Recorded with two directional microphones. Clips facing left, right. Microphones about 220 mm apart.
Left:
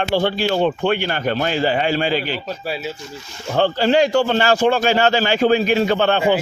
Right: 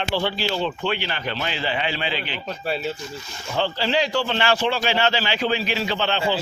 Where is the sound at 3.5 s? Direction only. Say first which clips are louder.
Left 7 dB; 50° left (ahead or behind).